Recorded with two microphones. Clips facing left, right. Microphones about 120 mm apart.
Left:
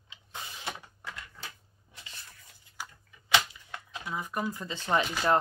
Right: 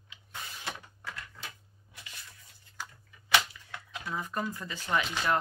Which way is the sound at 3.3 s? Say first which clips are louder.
Even; 20° left (ahead or behind).